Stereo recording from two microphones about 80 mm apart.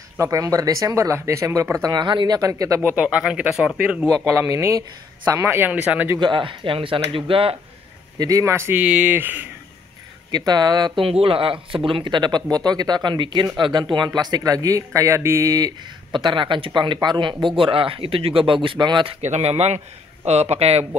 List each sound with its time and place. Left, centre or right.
0.2 s speech: right
2.0 s speech: right
2.8 s speech: right
3.1 s speech: centre
4.5 s mantra: right
5.3 s speech: right
5.7 s speech: centre
6.1 s speech: right
8.2 s mantra: right
8.7 s speech: centre
10.3 s speech: right
15.0 s mantra: right
15.8 s speech: right